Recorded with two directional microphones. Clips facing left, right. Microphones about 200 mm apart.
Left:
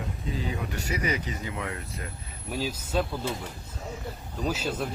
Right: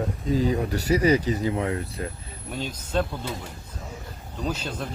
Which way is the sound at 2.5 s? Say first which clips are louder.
Right 1 dB; 5° left (ahead or behind).